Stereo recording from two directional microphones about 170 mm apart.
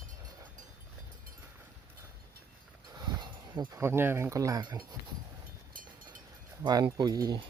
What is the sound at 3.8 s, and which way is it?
Speech, 15° right (ahead or behind).